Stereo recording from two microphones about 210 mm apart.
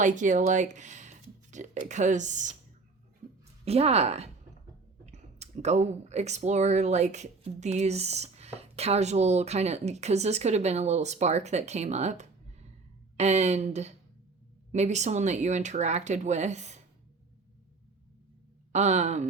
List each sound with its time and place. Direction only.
0.0 s speech: 35° right (ahead or behind)
3.7 s speech: 30° right (ahead or behind)
18.7 s speech: 35° right (ahead or behind)